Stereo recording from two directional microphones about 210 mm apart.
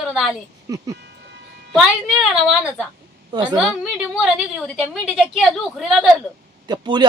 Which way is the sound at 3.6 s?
Centre (ahead or behind).